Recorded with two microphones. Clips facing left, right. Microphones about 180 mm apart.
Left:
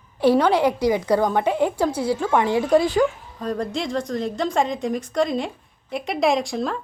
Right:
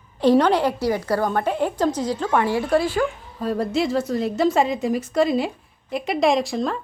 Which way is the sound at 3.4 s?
5° right (ahead or behind).